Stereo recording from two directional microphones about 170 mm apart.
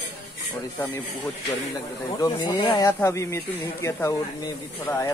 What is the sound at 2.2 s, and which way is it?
Speech, 30° left (ahead or behind).